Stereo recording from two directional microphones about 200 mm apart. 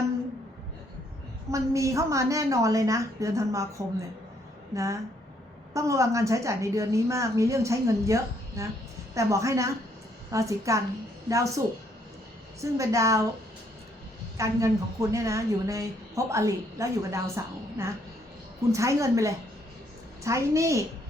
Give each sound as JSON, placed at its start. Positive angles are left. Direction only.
{"t": 1.5, "sound": "a woman's voice", "side_deg": -15}
{"t": 4.7, "sound": "a woman's voice", "side_deg": -15}
{"t": 14.3, "sound": "a woman's voice", "side_deg": -15}